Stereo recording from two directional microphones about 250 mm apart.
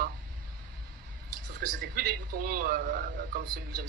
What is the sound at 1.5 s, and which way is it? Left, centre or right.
A man's voice, right.